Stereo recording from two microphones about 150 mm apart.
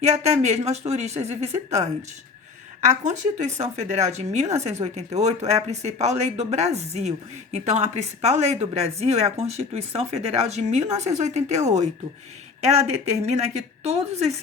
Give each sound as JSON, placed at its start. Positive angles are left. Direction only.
{"t": 0.0, "sound": "speech", "side_deg": -50}
{"t": 13.8, "sound": "speech", "side_deg": -45}